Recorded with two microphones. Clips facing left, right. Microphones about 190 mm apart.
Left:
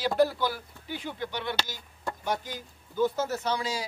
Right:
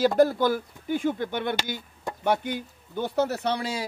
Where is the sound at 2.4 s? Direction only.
65° right (ahead or behind).